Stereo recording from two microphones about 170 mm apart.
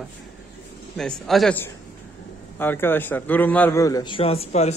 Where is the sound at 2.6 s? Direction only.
10° left (ahead or behind).